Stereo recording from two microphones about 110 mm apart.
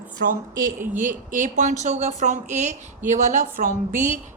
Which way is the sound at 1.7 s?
90° right.